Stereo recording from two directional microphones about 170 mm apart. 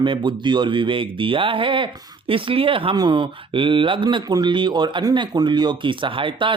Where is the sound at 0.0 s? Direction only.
30° right (ahead or behind).